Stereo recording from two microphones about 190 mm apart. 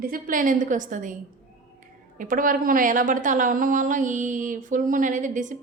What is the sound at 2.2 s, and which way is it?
A woman's voice, 45° right (ahead or behind).